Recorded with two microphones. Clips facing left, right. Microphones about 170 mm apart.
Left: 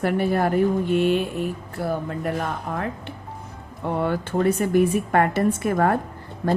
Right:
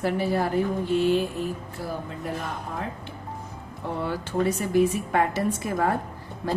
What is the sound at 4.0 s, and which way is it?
Speech, 60° left (ahead or behind).